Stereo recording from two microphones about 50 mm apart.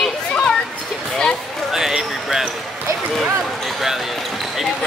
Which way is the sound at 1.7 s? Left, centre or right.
Centre.